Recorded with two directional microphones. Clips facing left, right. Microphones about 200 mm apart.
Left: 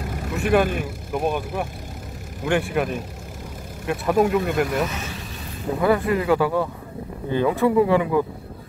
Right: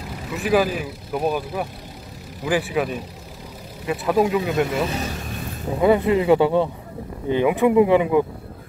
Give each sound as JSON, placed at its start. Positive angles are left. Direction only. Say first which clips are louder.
{"t": 0.3, "sound": "speech", "louder": "even", "side_deg": 0}
{"t": 4.8, "sound": "speech", "louder": "right 4 dB", "side_deg": -35}
{"t": 5.8, "sound": "speech", "louder": "right 3 dB", "side_deg": -20}